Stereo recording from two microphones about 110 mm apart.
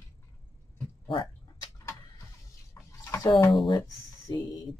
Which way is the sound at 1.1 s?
50° left (ahead or behind).